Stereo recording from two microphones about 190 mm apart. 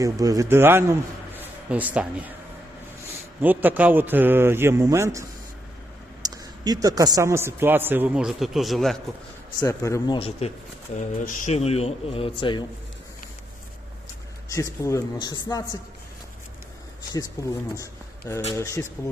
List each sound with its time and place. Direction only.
0.0 s a man's voice: 20° right (ahead or behind)
3.4 s a man's voice: 10° right (ahead or behind)
6.2 s a man's voice: 20° right (ahead or behind); by 9.0 s centre (ahead or behind)
9.6 s speech: 15° left (ahead or behind)
10.2 s a man's voice: 30° left (ahead or behind)
14.5 s a man's voice: 15° left (ahead or behind)
17.4 s speech: 15° left (ahead or behind)